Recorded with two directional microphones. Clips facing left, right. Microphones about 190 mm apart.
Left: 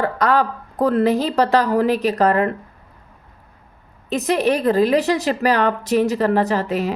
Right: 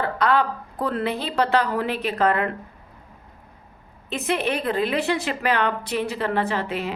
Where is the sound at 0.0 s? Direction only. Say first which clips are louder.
Left 3 dB; 45° left (ahead or behind).